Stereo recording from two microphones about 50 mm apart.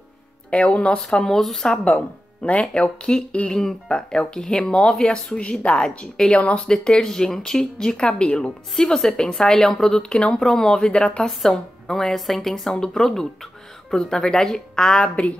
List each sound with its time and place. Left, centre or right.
0.5 s speech: left
1.0 s speech: centre
1.9 s speech: left; by 5.4 s centre
5.4 s a woman's voice: left